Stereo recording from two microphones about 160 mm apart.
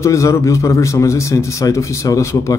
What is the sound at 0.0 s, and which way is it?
A man's voice, 20° left (ahead or behind).